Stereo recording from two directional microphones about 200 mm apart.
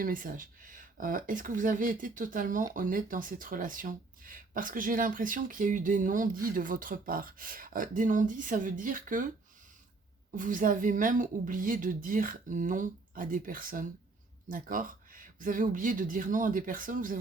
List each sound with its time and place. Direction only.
0.0 s speech: 45° right (ahead or behind)
10.3 s speech: 40° right (ahead or behind)